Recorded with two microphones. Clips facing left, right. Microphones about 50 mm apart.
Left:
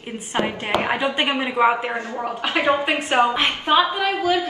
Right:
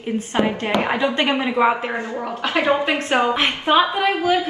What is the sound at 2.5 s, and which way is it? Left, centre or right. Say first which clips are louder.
Speech: right 1 dB; left.